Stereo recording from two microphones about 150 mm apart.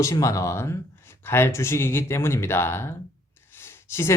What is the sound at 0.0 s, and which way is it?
Speech, 20° left (ahead or behind).